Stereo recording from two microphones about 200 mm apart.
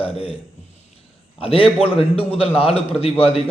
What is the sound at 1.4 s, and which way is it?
A man's voice, 30° left (ahead or behind).